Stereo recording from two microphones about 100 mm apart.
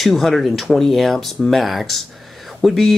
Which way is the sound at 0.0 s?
Centre (ahead or behind).